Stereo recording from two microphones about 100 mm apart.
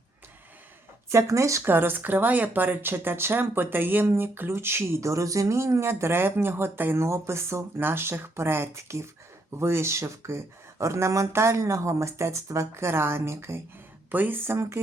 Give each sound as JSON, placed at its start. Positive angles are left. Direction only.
{"t": 1.1, "sound": "speech", "side_deg": -30}